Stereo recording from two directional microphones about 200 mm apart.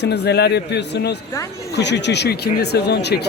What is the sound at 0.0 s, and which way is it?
Speech, 55° left (ahead or behind).